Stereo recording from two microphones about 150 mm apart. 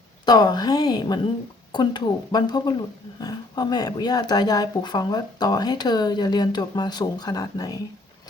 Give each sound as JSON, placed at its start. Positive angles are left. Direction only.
{"t": 0.3, "sound": "speech", "side_deg": 25}